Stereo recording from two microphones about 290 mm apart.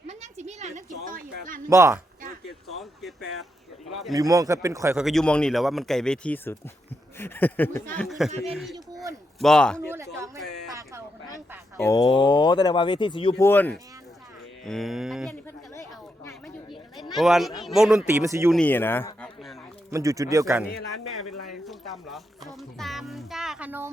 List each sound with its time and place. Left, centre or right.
0.1 s a sound: right
1.7 s speech: centre
2.6 s a sound: centre
3.8 s speech: centre
4.1 s a man's voice: centre
8.5 s a sound: centre
9.4 s a man's voice: centre
9.9 s a sound: centre
11.8 s a man's voice: centre
17.0 s a man's voice: centre
18.5 s a man's voice: centre
19.9 s speech: centre
21.5 s music: centre